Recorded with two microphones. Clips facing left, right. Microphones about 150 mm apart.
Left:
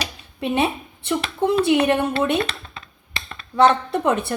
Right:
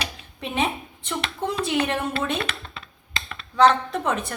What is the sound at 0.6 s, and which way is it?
Speech, 35° left (ahead or behind).